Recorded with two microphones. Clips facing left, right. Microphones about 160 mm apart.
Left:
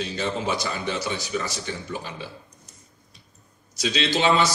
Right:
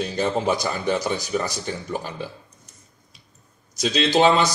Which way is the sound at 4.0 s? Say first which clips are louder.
Right 4 dB; 45° right (ahead or behind).